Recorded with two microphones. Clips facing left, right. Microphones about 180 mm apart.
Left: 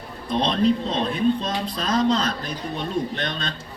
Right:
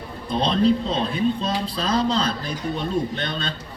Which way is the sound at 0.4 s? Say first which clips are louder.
Right 2 dB; 35° right (ahead or behind).